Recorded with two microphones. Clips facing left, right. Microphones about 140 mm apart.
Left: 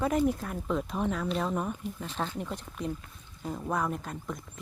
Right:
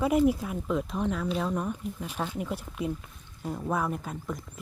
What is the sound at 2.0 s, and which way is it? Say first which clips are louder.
Speech: right 2 dB; 10° right (ahead or behind).